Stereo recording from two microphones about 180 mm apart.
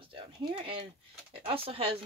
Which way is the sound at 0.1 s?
30° right (ahead or behind).